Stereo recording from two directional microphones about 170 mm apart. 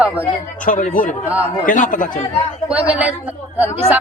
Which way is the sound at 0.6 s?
50° left (ahead or behind).